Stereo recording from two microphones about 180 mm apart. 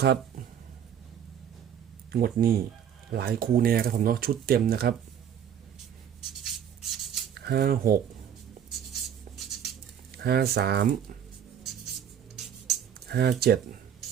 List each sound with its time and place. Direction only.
0.0 s a sound: 60° right (ahead or behind)
2.1 s speech: 55° right (ahead or behind)
6.4 s rub: centre (ahead or behind)
7.3 s speech: 60° right (ahead or behind)
8.9 s writing: centre (ahead or behind)
10.1 s speech: 60° right (ahead or behind)
13.1 s speech: 60° right (ahead or behind)